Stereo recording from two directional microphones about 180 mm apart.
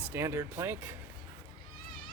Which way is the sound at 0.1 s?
15° right (ahead or behind).